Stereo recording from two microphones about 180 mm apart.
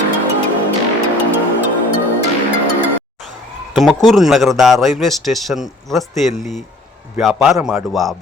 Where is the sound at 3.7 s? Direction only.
Centre (ahead or behind).